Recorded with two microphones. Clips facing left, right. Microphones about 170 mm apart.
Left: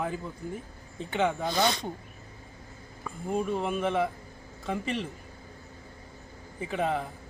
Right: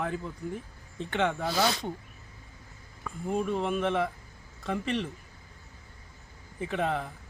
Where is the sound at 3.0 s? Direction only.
Centre (ahead or behind).